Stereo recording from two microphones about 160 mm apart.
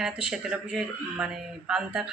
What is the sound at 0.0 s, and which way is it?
Speech, 5° right (ahead or behind).